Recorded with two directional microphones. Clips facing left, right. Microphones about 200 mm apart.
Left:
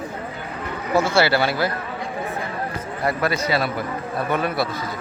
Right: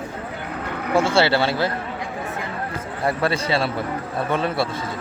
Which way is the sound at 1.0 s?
30° right (ahead or behind).